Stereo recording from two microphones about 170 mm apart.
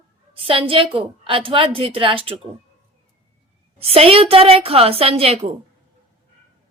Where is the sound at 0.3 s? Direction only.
30° right (ahead or behind).